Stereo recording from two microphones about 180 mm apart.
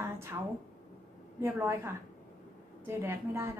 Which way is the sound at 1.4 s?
15° right (ahead or behind).